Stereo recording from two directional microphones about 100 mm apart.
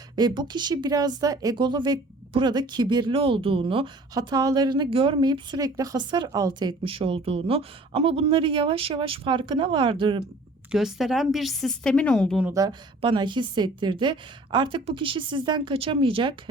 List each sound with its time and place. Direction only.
0.2 s a woman's voice: 45° right (ahead or behind)
1.5 s a woman's voice: 50° right (ahead or behind)
3.2 s speech: 65° right (ahead or behind)
4.1 s speech: 40° right (ahead or behind)
4.9 s a woman's voice: 65° right (ahead or behind); by 6.7 s 45° right (ahead or behind)
6.8 s speech: 65° right (ahead or behind)
10.7 s a woman's voice: 5° right (ahead or behind)
13.0 s a woman's voice: 50° right (ahead or behind)
15.7 s speech: 60° right (ahead or behind)